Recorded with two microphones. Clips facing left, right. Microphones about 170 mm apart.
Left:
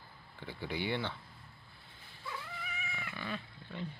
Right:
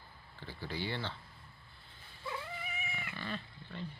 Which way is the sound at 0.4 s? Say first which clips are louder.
Left 2 dB; 15° left (ahead or behind).